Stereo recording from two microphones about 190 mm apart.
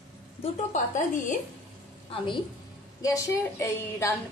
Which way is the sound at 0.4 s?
40° left (ahead or behind).